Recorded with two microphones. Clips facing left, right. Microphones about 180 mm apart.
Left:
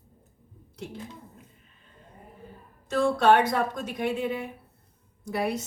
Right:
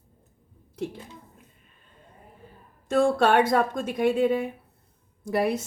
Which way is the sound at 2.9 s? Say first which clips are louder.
Right 1 dB; 50° right (ahead or behind).